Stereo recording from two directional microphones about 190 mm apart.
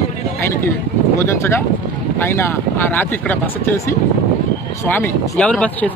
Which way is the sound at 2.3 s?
15° left (ahead or behind).